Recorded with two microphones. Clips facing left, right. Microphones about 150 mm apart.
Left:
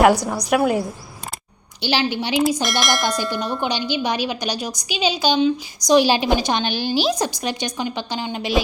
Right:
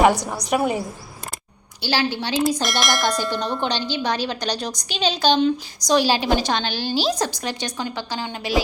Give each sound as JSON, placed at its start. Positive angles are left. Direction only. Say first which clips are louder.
{"t": 0.5, "sound": "a woman's voice", "louder": "left 3 dB", "side_deg": 0}
{"t": 1.8, "sound": "a woman's voice", "louder": "left 2 dB", "side_deg": 20}
{"t": 2.4, "sound": "a woman's voice", "louder": "left 1 dB", "side_deg": 0}
{"t": 5.9, "sound": "a woman's voice", "louder": "left 3 dB", "side_deg": 15}